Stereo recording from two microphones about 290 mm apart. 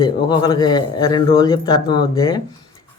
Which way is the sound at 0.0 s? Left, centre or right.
Centre.